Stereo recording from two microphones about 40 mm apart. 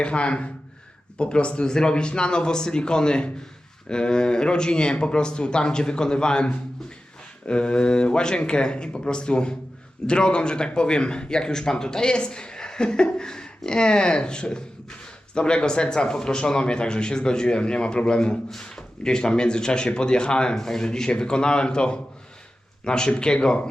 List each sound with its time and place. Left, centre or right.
0.0 s speech: left